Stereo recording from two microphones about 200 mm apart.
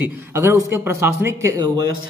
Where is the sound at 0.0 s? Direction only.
10° right (ahead or behind).